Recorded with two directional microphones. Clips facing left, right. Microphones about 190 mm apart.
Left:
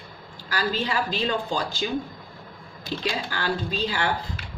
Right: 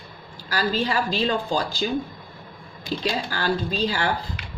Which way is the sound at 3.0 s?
35° right (ahead or behind).